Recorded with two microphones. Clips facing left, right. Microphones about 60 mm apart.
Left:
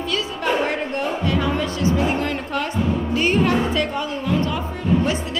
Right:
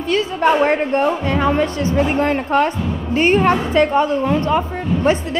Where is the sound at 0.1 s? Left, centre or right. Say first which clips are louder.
Right 8 dB; right.